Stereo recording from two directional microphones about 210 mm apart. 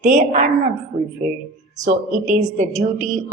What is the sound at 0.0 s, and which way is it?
A woman's voice, 35° right (ahead or behind).